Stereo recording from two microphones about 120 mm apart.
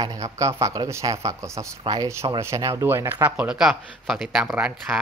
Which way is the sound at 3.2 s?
10° right (ahead or behind).